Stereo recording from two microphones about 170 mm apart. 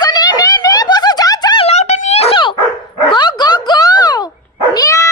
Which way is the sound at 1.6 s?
40° left (ahead or behind).